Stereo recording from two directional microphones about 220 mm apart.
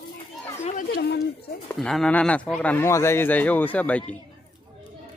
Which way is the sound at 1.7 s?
Centre (ahead or behind).